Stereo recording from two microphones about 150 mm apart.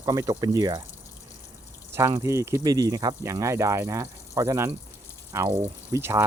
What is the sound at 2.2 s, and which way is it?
Speech, 20° right (ahead or behind).